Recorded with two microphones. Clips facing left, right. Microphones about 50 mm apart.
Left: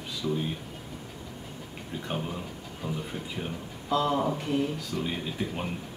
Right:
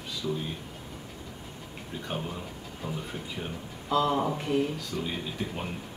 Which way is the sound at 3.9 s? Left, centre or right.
Centre.